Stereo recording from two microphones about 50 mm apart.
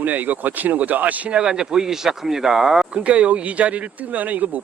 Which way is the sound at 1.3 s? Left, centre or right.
Centre.